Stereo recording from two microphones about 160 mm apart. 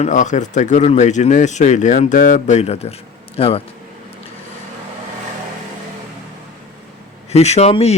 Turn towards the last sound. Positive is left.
turn(degrees=40)  # may be behind; listen again after turning